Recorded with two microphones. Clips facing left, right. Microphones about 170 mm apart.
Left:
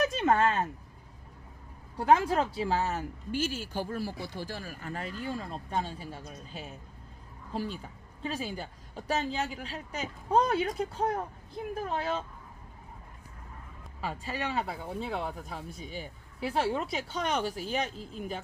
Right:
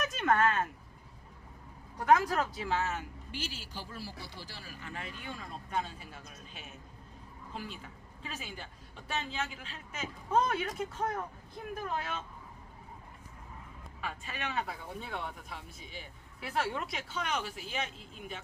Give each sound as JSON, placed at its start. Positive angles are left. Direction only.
{"t": 0.0, "sound": "a sound", "side_deg": 30}
{"t": 2.0, "sound": "speech", "side_deg": 30}
{"t": 14.0, "sound": "speech", "side_deg": 35}